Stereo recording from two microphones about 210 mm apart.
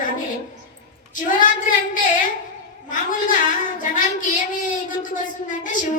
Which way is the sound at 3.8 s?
40° left (ahead or behind).